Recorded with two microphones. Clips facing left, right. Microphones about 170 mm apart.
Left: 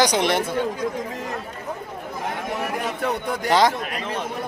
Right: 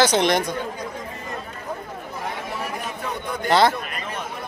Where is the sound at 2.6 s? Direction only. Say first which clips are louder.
Left 4 dB; 65° left (ahead or behind).